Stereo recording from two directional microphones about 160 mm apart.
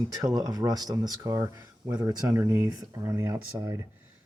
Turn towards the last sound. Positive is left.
turn(degrees=-20)  # may be behind; listen again after turning